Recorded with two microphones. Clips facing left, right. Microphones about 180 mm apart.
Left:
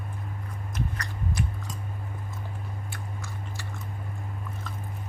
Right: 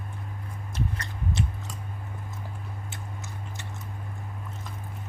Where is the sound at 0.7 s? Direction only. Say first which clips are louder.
Right 1 dB; 25° right (ahead or behind).